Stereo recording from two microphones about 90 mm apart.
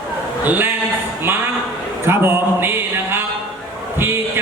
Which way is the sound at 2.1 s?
25° right (ahead or behind).